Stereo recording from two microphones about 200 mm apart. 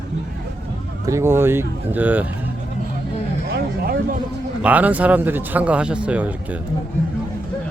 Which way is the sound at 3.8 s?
50° right (ahead or behind).